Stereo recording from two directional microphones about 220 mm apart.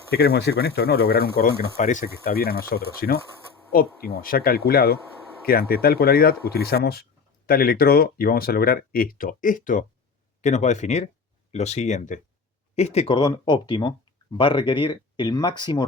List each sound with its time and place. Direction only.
0.1 s speech: 45° left (ahead or behind); by 15.9 s 20° left (ahead or behind)